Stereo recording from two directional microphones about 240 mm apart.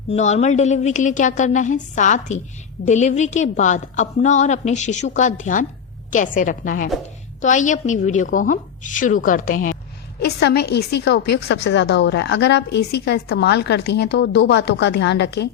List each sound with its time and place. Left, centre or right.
0.1 s a woman's voice: left